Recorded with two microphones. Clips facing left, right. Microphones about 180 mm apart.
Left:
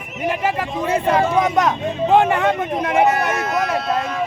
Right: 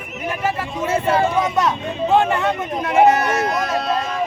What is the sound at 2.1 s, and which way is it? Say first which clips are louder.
Speech: left 2 dB; 15° left (ahead or behind).